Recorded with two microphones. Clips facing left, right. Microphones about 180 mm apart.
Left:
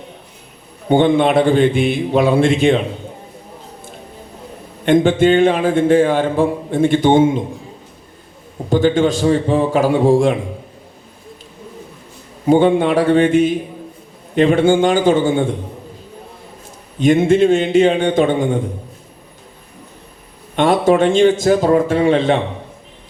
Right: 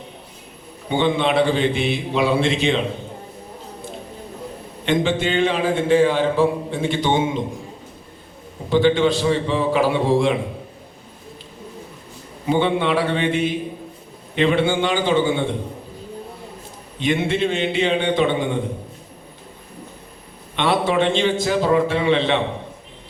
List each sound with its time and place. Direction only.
0.9 s a man's voice: 50° left (ahead or behind)
4.9 s a man's voice: 50° left (ahead or behind)
8.7 s a man's voice: 45° left (ahead or behind)
12.5 s a man's voice: 45° left (ahead or behind)
17.0 s a man's voice: 45° left (ahead or behind)
20.6 s a man's voice: 45° left (ahead or behind)